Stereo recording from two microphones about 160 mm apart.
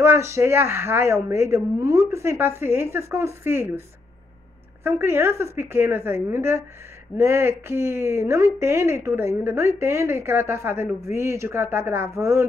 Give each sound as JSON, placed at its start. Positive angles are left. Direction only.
{"t": 0.0, "sound": "speech", "side_deg": -15}
{"t": 4.8, "sound": "speech", "side_deg": -15}